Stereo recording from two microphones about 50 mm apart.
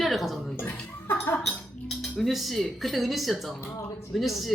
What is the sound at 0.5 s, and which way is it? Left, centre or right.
Speech, left.